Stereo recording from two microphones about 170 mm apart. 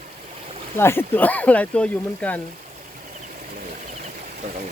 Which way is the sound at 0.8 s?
15° left (ahead or behind).